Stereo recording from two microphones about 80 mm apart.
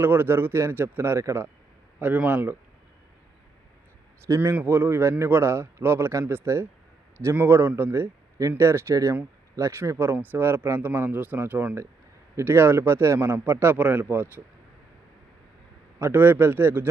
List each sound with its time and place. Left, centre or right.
0.0 s speech: right
4.5 s speech: right
8.4 s speech: right
16.0 s speech: right